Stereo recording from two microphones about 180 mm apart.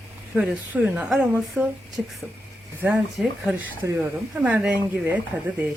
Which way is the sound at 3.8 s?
15° right (ahead or behind).